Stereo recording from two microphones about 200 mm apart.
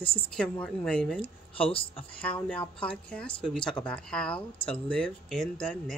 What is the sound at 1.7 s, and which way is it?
Speech, 30° left (ahead or behind).